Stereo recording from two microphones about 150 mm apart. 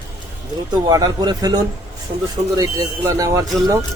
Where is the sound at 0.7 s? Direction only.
25° right (ahead or behind).